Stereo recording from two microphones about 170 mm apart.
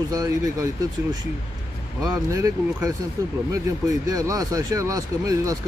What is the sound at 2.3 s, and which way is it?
Speech, 20° right (ahead or behind).